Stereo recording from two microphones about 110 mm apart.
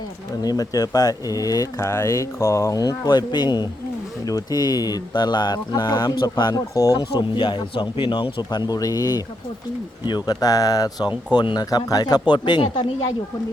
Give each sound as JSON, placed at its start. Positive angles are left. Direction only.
{"t": 0.4, "sound": "speech", "side_deg": 35}